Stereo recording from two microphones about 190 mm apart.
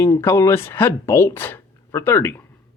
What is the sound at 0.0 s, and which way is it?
A woman's voice, 10° left (ahead or behind).